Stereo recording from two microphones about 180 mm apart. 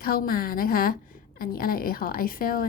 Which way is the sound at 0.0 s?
55° left (ahead or behind).